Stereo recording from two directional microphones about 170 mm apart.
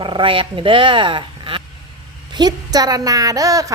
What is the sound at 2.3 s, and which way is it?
A woman's voice, 25° right (ahead or behind).